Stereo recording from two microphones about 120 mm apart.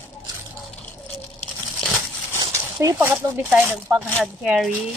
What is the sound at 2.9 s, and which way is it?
Speech, 15° right (ahead or behind).